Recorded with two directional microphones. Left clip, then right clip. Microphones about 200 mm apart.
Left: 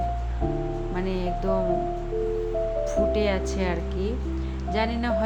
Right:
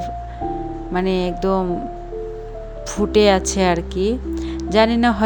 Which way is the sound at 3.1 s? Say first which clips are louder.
Right 10 dB; 45° right (ahead or behind).